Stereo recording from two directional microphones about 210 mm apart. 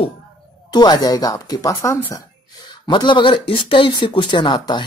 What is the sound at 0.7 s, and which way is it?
Speech, 20° left (ahead or behind).